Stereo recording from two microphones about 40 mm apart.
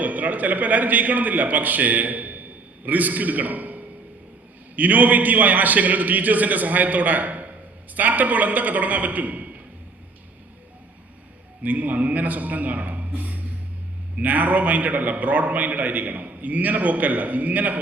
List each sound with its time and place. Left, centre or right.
0.0 s a man's voice: right
11.6 s a man's voice: right